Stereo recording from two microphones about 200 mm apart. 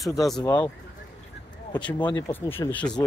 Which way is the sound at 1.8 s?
20° left (ahead or behind).